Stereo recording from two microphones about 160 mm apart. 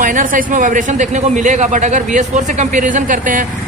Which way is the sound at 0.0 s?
55° right (ahead or behind).